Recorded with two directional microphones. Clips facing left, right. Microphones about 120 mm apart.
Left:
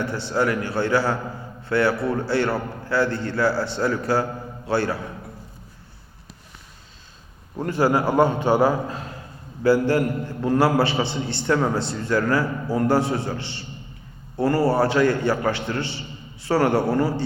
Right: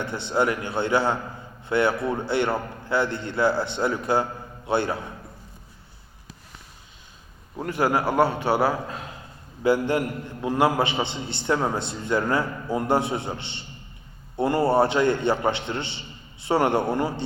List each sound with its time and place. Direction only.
0.0 s a man's voice: 20° right (ahead or behind)
8.0 s a man's voice: 15° left (ahead or behind)
8.3 s a man's voice: 10° right (ahead or behind)
9.6 s a man's voice: 20° right (ahead or behind)